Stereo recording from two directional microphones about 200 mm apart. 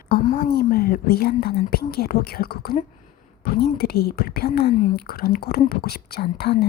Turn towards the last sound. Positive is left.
turn(degrees=50)  # may be behind; listen again after turning